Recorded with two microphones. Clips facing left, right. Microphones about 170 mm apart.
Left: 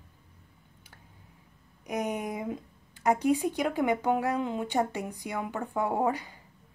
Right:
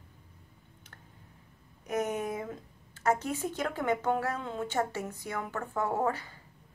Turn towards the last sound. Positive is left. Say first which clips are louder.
# left 2 dB
turn(degrees=15)  # may be behind; listen again after turning